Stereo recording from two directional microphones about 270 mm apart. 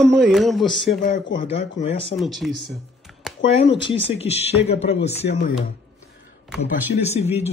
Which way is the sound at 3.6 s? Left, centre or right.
Centre.